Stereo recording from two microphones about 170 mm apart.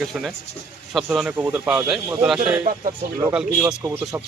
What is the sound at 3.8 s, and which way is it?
Speech, 15° right (ahead or behind).